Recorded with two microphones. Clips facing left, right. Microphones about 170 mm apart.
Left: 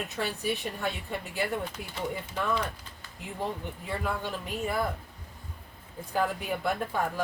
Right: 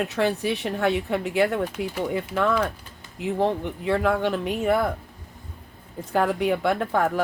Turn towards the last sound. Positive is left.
turn(degrees=-85)